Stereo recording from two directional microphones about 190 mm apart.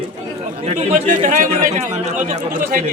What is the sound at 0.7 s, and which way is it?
A man's voice, 35° right (ahead or behind).